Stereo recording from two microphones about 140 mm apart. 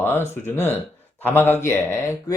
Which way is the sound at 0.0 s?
15° left (ahead or behind).